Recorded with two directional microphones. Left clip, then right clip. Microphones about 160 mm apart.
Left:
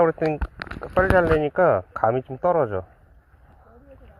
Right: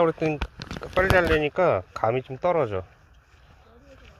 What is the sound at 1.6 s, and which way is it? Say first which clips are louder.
Speech: left 3 dB; 35° right (ahead or behind).